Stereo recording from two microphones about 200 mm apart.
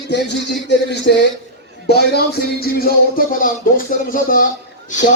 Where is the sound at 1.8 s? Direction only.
55° left (ahead or behind).